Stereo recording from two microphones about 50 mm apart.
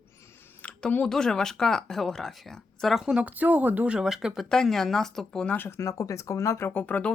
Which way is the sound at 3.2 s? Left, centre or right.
Right.